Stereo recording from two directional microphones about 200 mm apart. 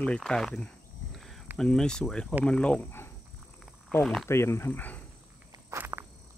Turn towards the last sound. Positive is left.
turn(degrees=-10)  # may be behind; listen again after turning